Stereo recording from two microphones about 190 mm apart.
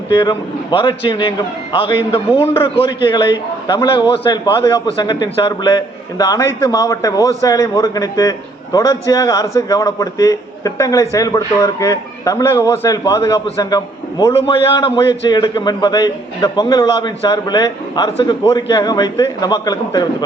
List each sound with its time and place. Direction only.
0.1 s a man's voice: 25° left (ahead or behind)
14.3 s a man's voice: 30° left (ahead or behind)